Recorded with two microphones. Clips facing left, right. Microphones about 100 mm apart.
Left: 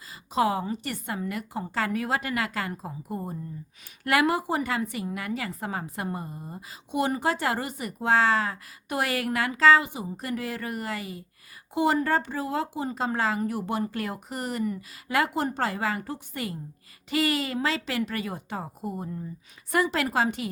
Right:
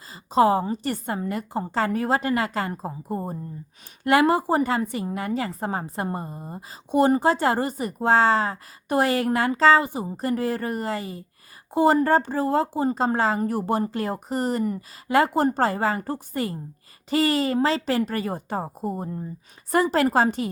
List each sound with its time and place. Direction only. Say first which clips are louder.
0.3 s a woman's voice: right 6 dB; 35° right (ahead or behind)